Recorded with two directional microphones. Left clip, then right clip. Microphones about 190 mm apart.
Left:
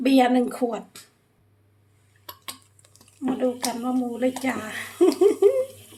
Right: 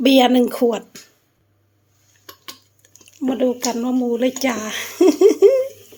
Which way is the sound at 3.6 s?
50° right (ahead or behind).